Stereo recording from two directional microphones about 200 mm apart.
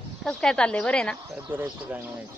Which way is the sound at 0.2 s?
5° left (ahead or behind).